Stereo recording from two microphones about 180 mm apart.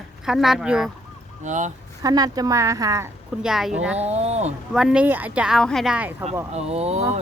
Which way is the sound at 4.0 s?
35° right (ahead or behind).